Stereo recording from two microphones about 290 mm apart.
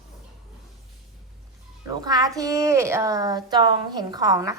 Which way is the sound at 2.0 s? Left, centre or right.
Centre.